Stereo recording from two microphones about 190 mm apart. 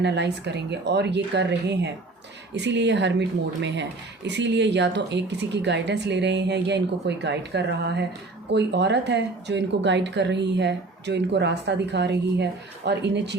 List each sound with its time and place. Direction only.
0.0 s speech: 65° right (ahead or behind)